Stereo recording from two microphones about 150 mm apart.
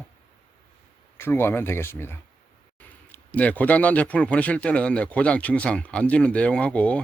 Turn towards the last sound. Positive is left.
turn(degrees=10)  # may be behind; listen again after turning